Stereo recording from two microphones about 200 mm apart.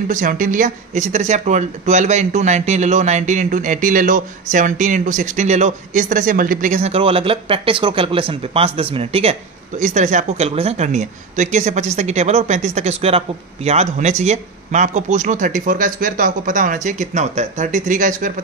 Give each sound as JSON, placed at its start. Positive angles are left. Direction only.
{"t": 0.1, "sound": "speech", "side_deg": -40}